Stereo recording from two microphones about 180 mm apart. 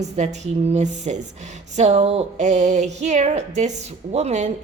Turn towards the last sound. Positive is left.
turn(degrees=-40)  # may be behind; listen again after turning